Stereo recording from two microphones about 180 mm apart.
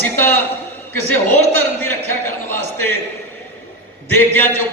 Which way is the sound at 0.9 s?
15° left (ahead or behind).